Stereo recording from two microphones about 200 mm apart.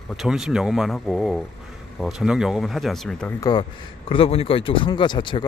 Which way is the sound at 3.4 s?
20° left (ahead or behind).